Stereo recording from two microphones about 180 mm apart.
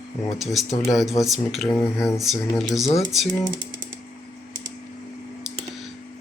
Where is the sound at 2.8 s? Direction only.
35° left (ahead or behind).